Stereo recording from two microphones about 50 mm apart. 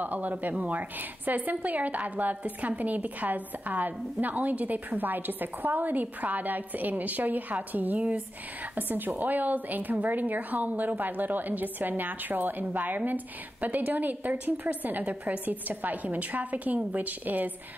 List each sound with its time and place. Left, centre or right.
0.0 s a woman's voice: right